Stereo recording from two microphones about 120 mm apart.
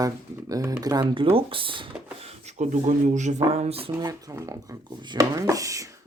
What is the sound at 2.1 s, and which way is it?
Speech, 65° right (ahead or behind).